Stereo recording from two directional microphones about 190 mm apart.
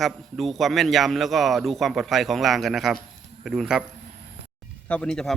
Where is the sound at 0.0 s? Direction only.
Centre (ahead or behind).